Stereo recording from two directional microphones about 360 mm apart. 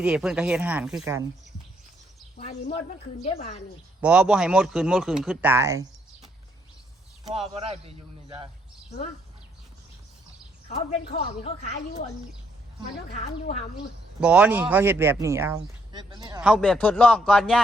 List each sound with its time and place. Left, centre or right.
0.0 s speech: centre
2.4 s a woman's voice: centre
4.0 s speech: centre
7.3 s a man's voice: centre
11.1 s a woman's voice: centre
14.2 s speech: centre